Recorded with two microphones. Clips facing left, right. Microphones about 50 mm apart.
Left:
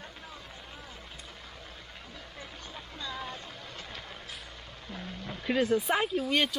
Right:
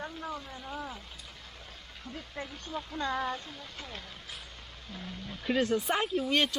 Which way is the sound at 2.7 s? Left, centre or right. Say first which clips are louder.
Right 12 dB; centre.